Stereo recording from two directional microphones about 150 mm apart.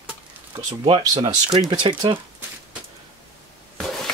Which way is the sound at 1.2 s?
30° right (ahead or behind).